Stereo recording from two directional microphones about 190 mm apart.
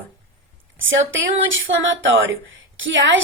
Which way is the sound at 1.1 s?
90° right.